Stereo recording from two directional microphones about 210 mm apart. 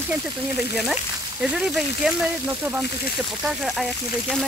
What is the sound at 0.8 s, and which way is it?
Speech, 5° right (ahead or behind).